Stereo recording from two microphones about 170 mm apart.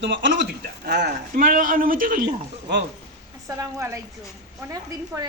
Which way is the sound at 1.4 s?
50° right (ahead or behind).